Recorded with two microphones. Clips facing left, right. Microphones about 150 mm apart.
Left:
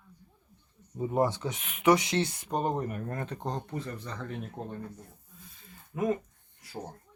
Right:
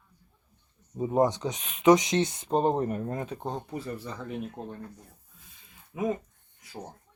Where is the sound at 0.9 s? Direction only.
20° right (ahead or behind).